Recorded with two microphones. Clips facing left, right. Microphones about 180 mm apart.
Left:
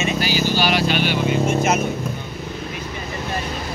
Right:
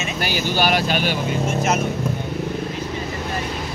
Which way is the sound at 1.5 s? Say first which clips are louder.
Even; centre (ahead or behind).